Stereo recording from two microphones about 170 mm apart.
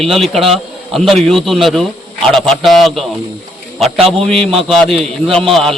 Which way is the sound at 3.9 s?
35° right (ahead or behind).